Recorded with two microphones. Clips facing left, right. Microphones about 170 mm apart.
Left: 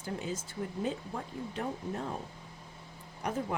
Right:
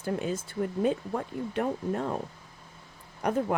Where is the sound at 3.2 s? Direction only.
60° right (ahead or behind).